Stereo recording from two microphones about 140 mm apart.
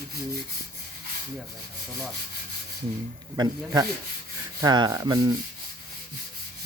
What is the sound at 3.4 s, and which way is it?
Rub, 30° right (ahead or behind).